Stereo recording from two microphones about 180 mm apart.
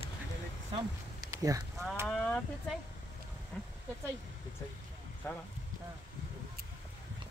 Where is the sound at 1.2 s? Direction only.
20° right (ahead or behind).